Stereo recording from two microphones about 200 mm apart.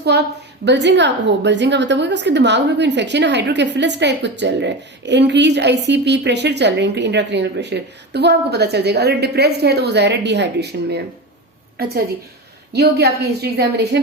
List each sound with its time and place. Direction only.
0.6 s a woman's voice: 60° right (ahead or behind)